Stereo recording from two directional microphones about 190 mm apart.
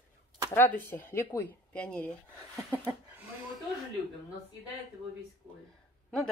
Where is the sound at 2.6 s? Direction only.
10° right (ahead or behind).